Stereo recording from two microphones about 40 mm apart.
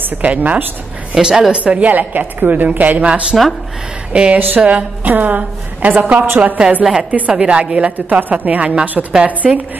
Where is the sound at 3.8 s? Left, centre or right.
Right.